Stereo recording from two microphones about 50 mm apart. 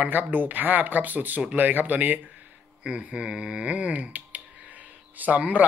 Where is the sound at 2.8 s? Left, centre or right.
Right.